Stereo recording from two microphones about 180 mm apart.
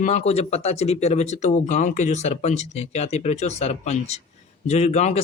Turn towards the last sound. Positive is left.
turn(degrees=40)  # may be behind; listen again after turning